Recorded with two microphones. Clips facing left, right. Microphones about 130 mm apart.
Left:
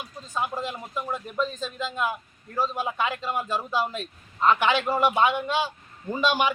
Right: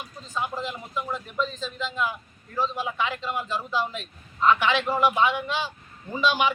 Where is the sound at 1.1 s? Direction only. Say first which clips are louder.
Left 2 dB; 45° left (ahead or behind).